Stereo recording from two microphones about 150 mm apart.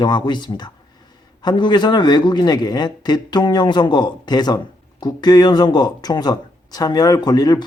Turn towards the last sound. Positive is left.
turn(degrees=25)  # may be behind; listen again after turning